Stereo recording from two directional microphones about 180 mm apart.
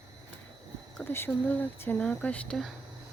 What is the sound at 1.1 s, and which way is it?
A woman's voice, 10° left (ahead or behind).